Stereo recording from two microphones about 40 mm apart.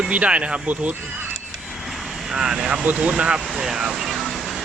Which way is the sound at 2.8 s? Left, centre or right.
Right.